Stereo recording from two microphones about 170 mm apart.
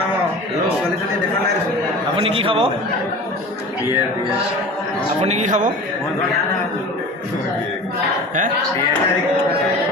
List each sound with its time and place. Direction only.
2.1 s a man's voice: 35° right (ahead or behind)
5.2 s speech: 45° right (ahead or behind)